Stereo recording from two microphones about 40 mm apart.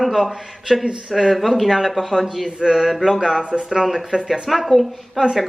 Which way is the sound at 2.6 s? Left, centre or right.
Centre.